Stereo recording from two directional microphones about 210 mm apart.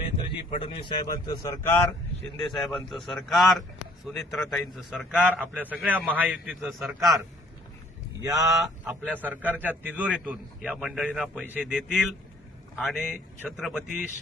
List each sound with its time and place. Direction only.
0.5 s a man's voice: 25° left (ahead or behind)
2.4 s a man's voice: centre (ahead or behind)
8.2 s a man's voice: 15° right (ahead or behind)